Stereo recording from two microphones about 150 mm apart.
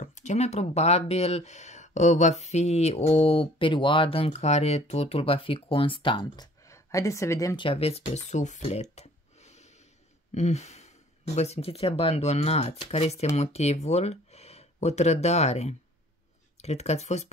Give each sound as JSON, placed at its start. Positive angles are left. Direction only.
{"t": 0.0, "sound": "speech", "side_deg": 55}
{"t": 7.6, "sound": "speech", "side_deg": 40}